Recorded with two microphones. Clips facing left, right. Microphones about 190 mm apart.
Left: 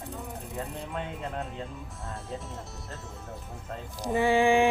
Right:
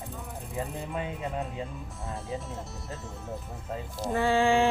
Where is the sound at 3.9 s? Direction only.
15° left (ahead or behind).